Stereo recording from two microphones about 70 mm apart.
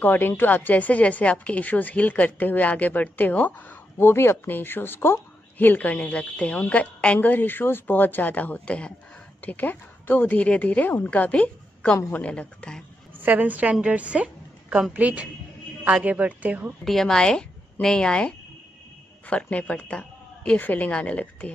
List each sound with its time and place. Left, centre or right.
0.0 s a woman's voice: left
13.2 s a woman's voice: right
16.8 s a woman's voice: centre